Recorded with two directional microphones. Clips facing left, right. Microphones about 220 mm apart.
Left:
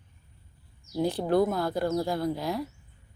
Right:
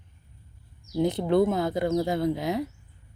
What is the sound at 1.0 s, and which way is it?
Speech, 20° right (ahead or behind).